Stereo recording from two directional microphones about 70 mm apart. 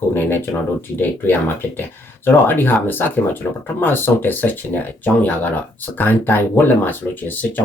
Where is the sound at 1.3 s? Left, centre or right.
Left.